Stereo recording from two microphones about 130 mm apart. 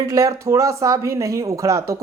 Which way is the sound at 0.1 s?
25° right (ahead or behind).